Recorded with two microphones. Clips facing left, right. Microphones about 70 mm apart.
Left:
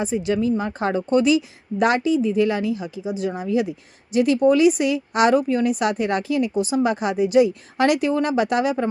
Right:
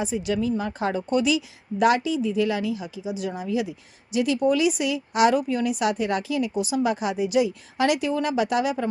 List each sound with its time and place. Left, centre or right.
0.0 s a woman's voice: left